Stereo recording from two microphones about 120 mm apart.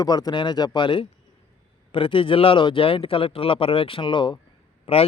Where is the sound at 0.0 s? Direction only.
35° left (ahead or behind).